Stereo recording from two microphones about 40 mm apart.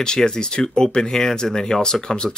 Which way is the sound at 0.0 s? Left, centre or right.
Centre.